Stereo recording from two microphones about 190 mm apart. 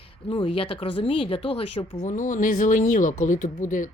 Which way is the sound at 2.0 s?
40° left (ahead or behind).